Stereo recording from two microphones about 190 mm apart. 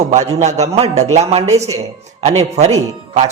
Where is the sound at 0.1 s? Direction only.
40° right (ahead or behind).